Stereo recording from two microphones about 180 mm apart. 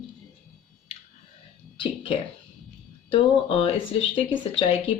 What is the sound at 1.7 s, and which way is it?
Speech, 30° left (ahead or behind).